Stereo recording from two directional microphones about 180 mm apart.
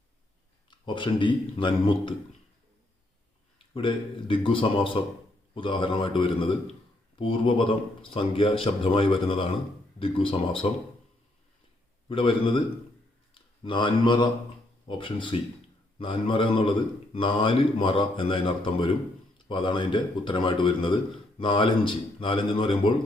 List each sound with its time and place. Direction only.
0.7 s a man's voice: 25° left (ahead or behind)
3.8 s a man's voice: 30° left (ahead or behind)
12.0 s a man's voice: 30° left (ahead or behind)